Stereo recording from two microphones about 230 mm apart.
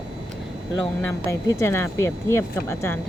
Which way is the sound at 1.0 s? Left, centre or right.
Centre.